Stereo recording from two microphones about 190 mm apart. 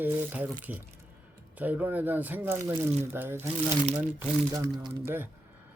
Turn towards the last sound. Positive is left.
turn(degrees=-10)  # may be behind; listen again after turning